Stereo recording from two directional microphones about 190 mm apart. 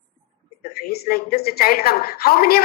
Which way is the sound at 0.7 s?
55° left (ahead or behind).